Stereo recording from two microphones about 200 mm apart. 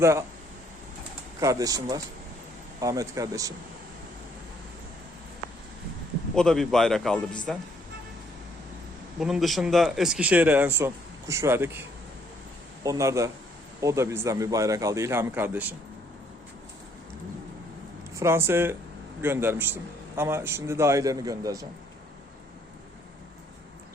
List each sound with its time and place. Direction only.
0.0 s speech: 10° right (ahead or behind)
1.4 s speech: 15° right (ahead or behind)
6.3 s speech: 5° left (ahead or behind)
9.2 s speech: centre (ahead or behind)
12.8 s speech: 15° right (ahead or behind)
18.1 s speech: 15° right (ahead or behind)